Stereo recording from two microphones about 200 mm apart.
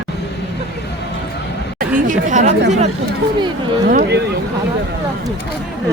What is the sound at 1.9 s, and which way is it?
Chatter, 40° right (ahead or behind).